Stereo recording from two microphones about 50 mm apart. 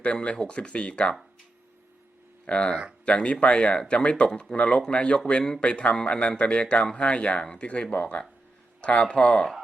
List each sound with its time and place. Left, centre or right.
0.0 s speech: left
2.5 s speech: centre